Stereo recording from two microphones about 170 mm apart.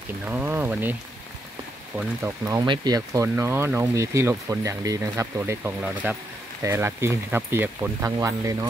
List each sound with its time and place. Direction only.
0.3 s speech: 10° right (ahead or behind)
2.4 s speech: 25° right (ahead or behind)